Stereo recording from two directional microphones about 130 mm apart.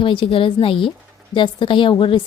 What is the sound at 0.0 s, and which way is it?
A woman's voice, 40° left (ahead or behind).